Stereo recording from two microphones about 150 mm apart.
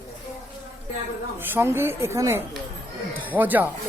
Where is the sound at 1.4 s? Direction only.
15° right (ahead or behind).